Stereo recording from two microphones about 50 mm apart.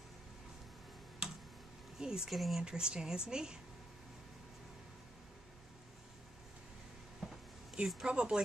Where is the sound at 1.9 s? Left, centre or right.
Centre.